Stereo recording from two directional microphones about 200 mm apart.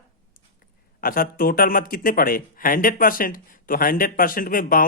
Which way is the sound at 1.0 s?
45° left (ahead or behind).